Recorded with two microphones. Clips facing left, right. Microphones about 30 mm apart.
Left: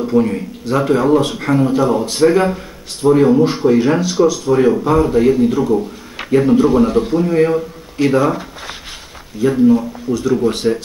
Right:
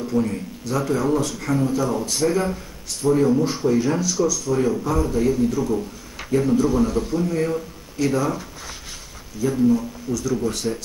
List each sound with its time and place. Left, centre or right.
0.0 s speech: left